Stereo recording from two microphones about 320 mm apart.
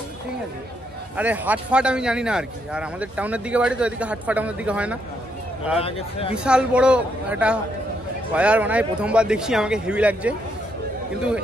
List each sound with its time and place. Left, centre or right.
1.1 s speech: centre
5.8 s speech: centre
6.3 s speech: centre